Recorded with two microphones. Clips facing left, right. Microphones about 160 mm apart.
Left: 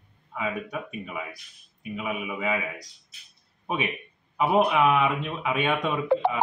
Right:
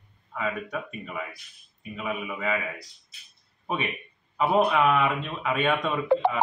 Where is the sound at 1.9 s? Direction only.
15° left (ahead or behind).